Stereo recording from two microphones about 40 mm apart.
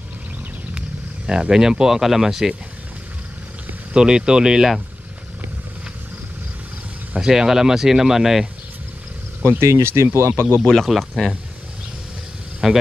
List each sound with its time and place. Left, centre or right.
0.7 s speech: centre
3.9 s speech: centre
7.2 s speech: centre
9.5 s speech: right
10.9 s speech: centre
12.6 s speech: centre